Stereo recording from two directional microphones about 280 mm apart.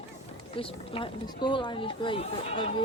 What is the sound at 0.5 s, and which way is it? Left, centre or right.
A woman's voice, centre.